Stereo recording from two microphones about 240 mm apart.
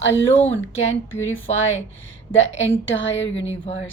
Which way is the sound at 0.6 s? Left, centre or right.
Left.